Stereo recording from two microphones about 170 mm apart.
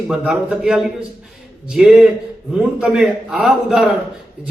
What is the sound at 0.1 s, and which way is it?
Speech, 5° right (ahead or behind).